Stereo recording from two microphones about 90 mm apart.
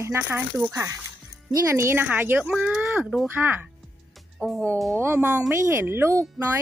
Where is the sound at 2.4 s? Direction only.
5° right (ahead or behind).